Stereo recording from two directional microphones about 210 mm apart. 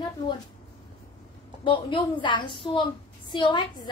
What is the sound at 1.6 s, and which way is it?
A woman's voice, 20° left (ahead or behind).